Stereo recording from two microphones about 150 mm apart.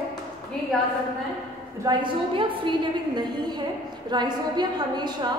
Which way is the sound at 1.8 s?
30° right (ahead or behind).